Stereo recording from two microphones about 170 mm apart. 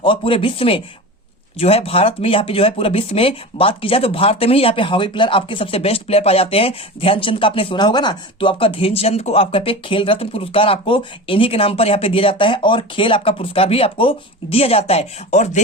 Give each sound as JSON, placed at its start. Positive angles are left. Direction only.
{"t": 0.0, "sound": "speech", "side_deg": 30}